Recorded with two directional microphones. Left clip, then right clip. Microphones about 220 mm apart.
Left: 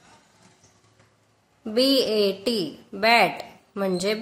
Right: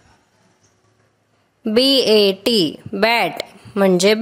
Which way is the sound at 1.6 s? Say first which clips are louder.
Right 7 dB; 40° right (ahead or behind).